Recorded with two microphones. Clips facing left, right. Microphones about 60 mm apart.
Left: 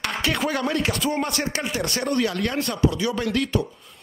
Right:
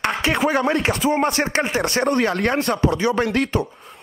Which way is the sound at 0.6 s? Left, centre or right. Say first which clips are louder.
Right 4 dB; right.